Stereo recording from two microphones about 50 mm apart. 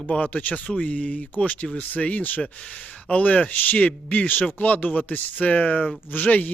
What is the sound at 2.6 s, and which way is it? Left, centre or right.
A man's voice, left.